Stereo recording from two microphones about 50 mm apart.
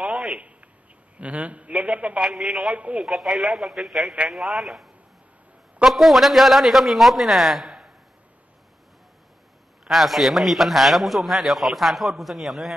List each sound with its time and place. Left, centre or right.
0.0 s a sound: centre
1.1 s a man's voice: right
2.2 s a man's voice: centre
2.7 s a man's voice: right
3.1 s a man's voice: centre
9.8 s a man's voice: centre